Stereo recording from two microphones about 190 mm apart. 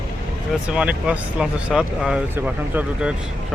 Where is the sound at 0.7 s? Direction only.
5° right (ahead or behind).